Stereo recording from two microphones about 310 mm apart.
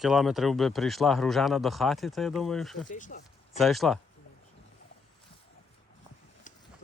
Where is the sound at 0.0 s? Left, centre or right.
Centre.